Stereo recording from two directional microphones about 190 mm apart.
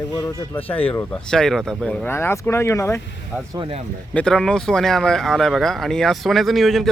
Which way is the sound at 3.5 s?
25° right (ahead or behind).